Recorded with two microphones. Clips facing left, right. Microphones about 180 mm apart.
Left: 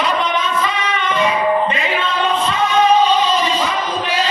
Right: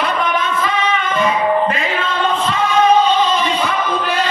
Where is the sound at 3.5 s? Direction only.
60° right (ahead or behind).